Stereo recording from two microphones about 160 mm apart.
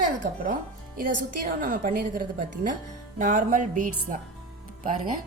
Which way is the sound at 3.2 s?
50° right (ahead or behind).